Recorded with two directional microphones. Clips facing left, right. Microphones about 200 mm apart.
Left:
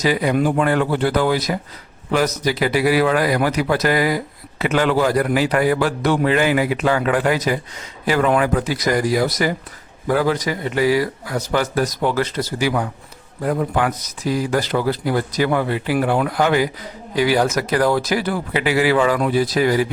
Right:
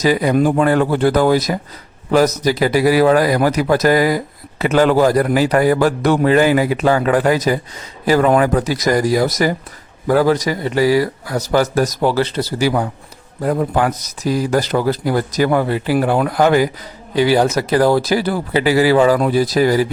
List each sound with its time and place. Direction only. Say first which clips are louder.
0.0 s a man's voice: right 4 dB; 40° right (ahead or behind)
17.2 s a man's voice: right 3 dB; 30° right (ahead or behind)